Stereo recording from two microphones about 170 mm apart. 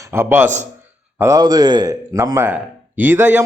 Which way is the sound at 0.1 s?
15° right (ahead or behind).